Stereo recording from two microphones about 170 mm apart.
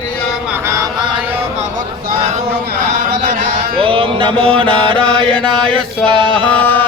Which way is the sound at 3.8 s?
30° right (ahead or behind).